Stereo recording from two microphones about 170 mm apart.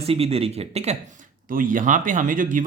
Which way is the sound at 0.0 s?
35° right (ahead or behind).